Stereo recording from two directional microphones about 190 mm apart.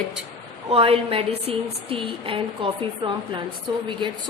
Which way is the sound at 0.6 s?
30° right (ahead or behind).